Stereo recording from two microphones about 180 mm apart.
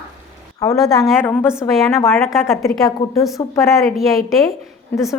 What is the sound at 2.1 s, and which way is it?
Speech, centre (ahead or behind).